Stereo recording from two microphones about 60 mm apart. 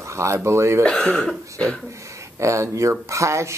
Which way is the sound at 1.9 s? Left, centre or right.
Right.